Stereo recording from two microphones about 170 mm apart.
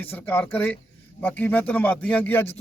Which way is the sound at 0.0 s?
10° left (ahead or behind).